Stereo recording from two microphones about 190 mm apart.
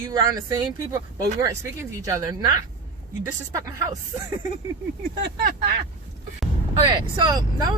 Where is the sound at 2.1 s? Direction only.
20° right (ahead or behind).